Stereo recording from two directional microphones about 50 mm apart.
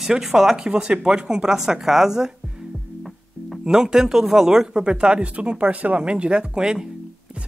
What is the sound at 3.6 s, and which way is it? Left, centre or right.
Speech, centre.